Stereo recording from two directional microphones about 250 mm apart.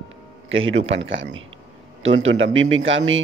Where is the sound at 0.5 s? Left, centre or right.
Right.